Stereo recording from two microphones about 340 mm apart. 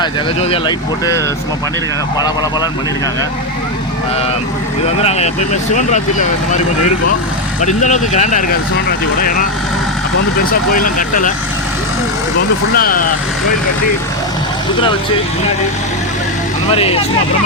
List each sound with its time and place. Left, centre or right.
5.0 s speech: centre
7.6 s speech: left
10.8 s speech: left
12.7 s speech: left
16.6 s speech: centre